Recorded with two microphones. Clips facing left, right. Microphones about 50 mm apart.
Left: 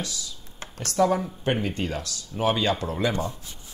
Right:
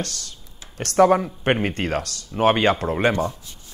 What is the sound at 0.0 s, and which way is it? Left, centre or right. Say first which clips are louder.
Speech: right 3 dB; right.